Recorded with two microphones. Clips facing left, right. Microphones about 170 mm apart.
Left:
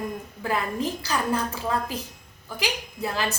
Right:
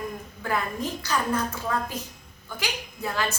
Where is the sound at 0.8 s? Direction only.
30° left (ahead or behind).